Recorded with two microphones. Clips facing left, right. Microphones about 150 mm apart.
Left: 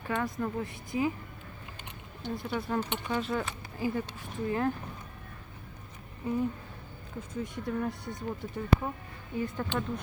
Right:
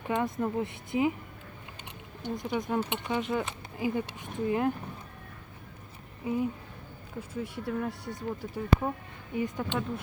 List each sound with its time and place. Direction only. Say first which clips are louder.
0.1 s speech: right 3 dB; 20° right (ahead or behind)
2.2 s speech: right 2 dB; 15° right (ahead or behind)
6.2 s speech: even; 10° right (ahead or behind)